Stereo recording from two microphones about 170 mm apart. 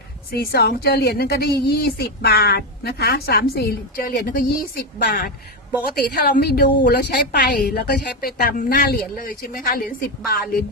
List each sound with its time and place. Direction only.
0.3 s a woman's voice: 70° left (ahead or behind)
8.5 s a woman's voice: 50° left (ahead or behind)